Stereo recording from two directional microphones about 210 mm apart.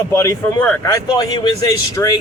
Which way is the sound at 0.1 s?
10° left (ahead or behind).